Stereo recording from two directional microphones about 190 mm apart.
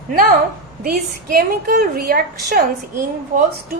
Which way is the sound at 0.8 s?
50° right (ahead or behind).